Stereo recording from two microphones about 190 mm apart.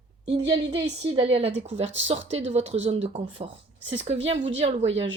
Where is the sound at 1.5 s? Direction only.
75° right (ahead or behind).